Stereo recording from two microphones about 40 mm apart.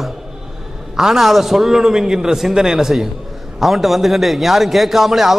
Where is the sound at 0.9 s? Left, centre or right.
Centre.